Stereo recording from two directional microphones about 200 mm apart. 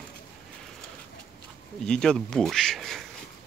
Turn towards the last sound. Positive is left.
turn(degrees=0)  # may be behind; listen again after turning